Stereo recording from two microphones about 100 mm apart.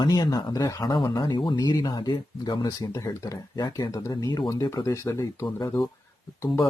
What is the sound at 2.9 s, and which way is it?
Speech, 35° left (ahead or behind).